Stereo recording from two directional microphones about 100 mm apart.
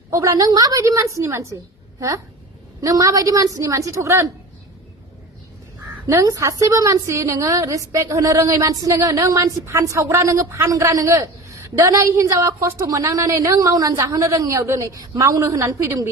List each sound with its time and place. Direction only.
0.1 s a woman's voice: 35° right (ahead or behind)
6.1 s a woman's voice: 30° right (ahead or behind)